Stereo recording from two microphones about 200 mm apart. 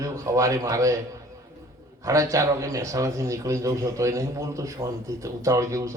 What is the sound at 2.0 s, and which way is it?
A man's voice, 15° right (ahead or behind).